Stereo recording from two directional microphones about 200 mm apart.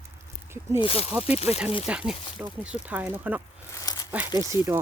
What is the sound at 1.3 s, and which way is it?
Speech, 30° left (ahead or behind).